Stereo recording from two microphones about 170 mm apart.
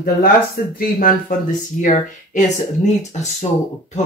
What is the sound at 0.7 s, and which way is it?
Speech, 60° left (ahead or behind).